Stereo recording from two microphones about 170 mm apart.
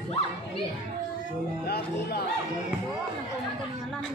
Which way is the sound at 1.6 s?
65° left (ahead or behind).